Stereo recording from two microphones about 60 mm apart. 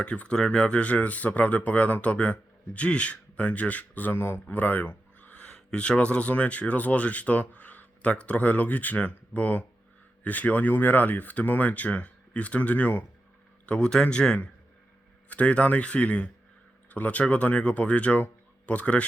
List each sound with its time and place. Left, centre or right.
0.0 s speech: centre
4.4 s a sound: left
5.5 s speech: centre
13.7 s a man's voice: centre